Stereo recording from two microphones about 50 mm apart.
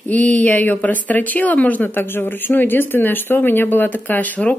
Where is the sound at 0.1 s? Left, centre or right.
Left.